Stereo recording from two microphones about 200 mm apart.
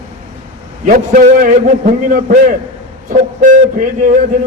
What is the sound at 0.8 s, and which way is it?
A man's voice, 45° right (ahead or behind).